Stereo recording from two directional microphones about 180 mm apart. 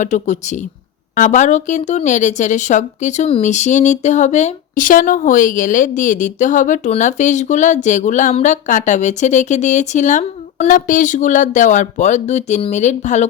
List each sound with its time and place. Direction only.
0.0 s speech: 40° left (ahead or behind)